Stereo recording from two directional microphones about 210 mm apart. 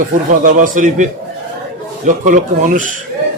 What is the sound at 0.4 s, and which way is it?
Speech, 40° right (ahead or behind).